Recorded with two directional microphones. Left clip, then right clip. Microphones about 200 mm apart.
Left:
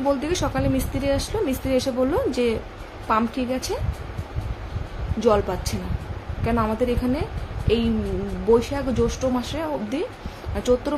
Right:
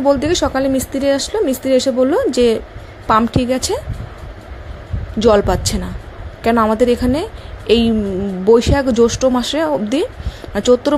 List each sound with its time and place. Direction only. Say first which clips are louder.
0.1 s speech: right 10 dB; 30° right (ahead or behind)
5.2 s speech: right 8 dB; 40° right (ahead or behind)